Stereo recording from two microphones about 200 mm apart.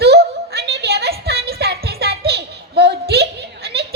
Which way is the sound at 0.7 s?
55° right (ahead or behind).